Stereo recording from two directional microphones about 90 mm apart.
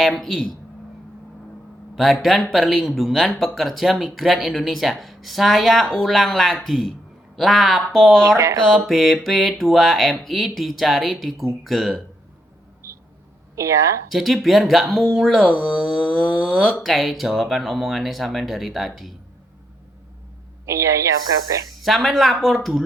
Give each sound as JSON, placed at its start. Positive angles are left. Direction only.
{"t": 0.0, "sound": "speech", "side_deg": 0}
{"t": 2.0, "sound": "speech", "side_deg": 0}
{"t": 12.8, "sound": "a sound", "side_deg": -30}
{"t": 13.6, "sound": "a woman's voice", "side_deg": -35}
{"t": 14.1, "sound": "speech", "side_deg": 0}
{"t": 20.7, "sound": "a woman's voice", "side_deg": -35}
{"t": 21.8, "sound": "speech", "side_deg": 0}